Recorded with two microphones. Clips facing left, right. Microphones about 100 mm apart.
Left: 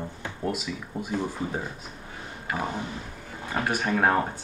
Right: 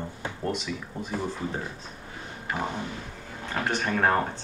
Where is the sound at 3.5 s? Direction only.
10° left (ahead or behind).